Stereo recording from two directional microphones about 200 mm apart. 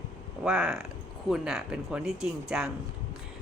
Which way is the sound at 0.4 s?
5° right (ahead or behind).